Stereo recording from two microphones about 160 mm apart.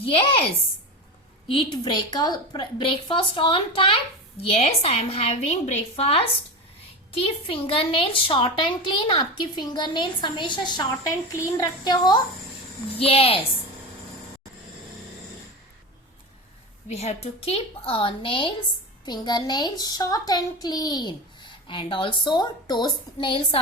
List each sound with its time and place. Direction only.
1.5 s a woman's voice: 30° left (ahead or behind)
13.0 s a woman's voice: 35° left (ahead or behind)
16.9 s a woman's voice: 40° left (ahead or behind)